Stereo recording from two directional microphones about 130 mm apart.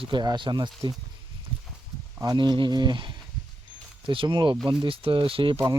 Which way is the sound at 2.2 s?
35° right (ahead or behind).